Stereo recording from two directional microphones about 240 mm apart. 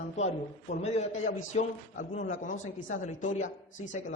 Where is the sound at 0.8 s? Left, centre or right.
Left.